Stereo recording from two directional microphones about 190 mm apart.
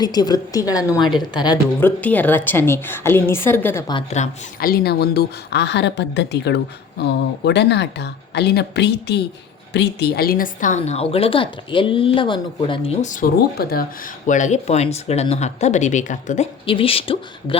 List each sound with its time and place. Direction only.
0.0 s a woman's voice: 20° left (ahead or behind)
1.8 s a woman's voice: 10° left (ahead or behind)
3.9 s a woman's voice: 35° left (ahead or behind)
4.6 s a woman's voice: 55° left (ahead or behind)
14.3 s a woman's voice: 40° left (ahead or behind)
16.6 s a woman's voice: 30° left (ahead or behind)